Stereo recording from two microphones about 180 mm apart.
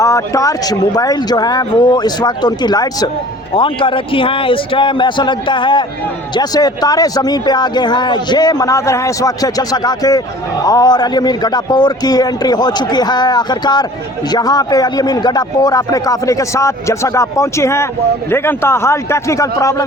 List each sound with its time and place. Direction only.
0.0 s a man's voice: 20° left (ahead or behind)